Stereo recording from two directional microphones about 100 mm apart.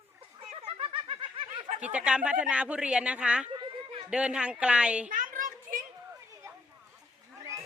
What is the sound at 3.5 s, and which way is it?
Children playing, 50° right (ahead or behind).